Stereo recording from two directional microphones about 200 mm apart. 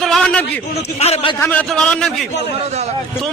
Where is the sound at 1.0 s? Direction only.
30° left (ahead or behind).